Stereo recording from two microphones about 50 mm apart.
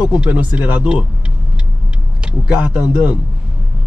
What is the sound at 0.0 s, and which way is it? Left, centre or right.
Speech, right.